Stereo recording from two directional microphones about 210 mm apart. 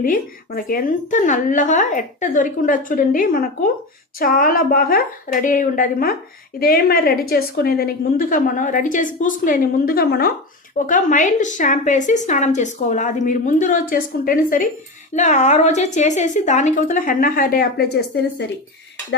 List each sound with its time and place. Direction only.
0.0 s a woman's voice: 40° left (ahead or behind)